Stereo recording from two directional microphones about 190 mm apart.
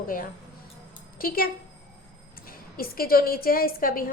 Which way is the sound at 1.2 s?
50° left (ahead or behind).